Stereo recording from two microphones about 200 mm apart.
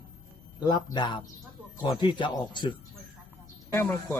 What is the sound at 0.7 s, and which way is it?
Speech, 20° left (ahead or behind).